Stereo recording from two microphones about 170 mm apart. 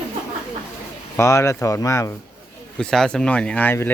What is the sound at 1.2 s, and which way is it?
Speech, 15° left (ahead or behind).